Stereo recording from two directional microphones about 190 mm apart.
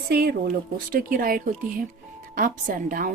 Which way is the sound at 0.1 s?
55° right (ahead or behind).